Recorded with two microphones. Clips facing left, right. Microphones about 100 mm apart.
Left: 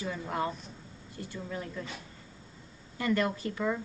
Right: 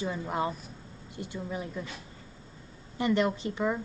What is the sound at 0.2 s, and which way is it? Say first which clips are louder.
Speech: right 2 dB; 20° right (ahead or behind).